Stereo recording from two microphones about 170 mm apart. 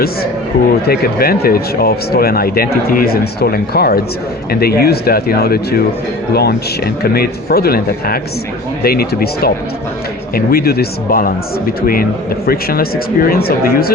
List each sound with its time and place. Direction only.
0.9 s speech: 60° left (ahead or behind)
12.5 s speech: 60° left (ahead or behind)